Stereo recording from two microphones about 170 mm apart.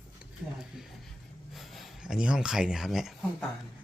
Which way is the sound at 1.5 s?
Centre (ahead or behind).